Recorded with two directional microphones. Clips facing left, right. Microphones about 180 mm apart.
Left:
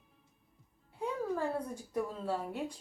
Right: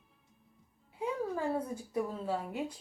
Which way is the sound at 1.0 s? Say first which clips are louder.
Right 1 dB; 5° right (ahead or behind).